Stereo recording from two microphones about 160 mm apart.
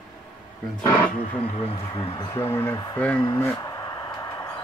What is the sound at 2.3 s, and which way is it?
Speech, 15° left (ahead or behind).